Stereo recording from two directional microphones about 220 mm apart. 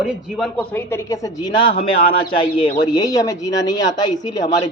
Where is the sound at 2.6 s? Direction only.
15° left (ahead or behind).